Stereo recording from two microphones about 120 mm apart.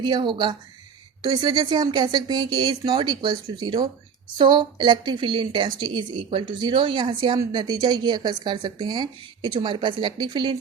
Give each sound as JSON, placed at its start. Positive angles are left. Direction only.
{"t": 0.0, "sound": "a woman's voice", "side_deg": -40}